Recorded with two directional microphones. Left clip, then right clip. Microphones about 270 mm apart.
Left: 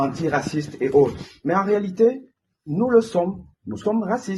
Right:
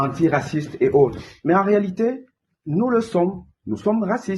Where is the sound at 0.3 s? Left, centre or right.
Right.